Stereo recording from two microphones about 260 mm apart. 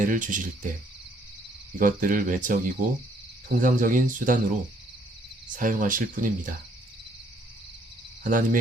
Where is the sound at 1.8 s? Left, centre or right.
Right.